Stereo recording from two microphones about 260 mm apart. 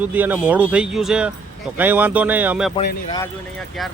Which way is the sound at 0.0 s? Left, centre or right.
Centre.